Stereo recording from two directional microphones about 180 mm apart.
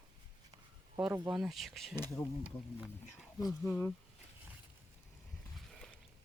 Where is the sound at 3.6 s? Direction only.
5° left (ahead or behind).